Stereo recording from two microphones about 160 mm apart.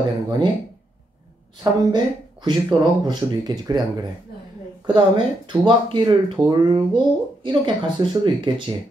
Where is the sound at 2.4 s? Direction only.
25° right (ahead or behind).